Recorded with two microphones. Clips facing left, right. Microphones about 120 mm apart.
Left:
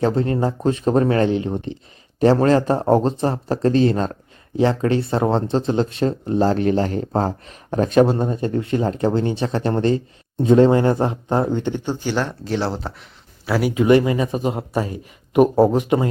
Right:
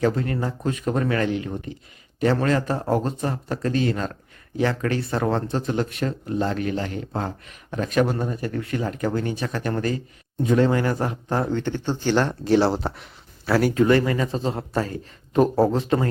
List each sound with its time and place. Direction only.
0.0 s a man's voice: 30° left (ahead or behind); by 13.1 s centre (ahead or behind)
13.4 s speech: 10° left (ahead or behind)